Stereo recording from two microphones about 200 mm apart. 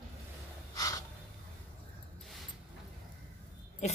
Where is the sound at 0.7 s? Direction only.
15° left (ahead or behind).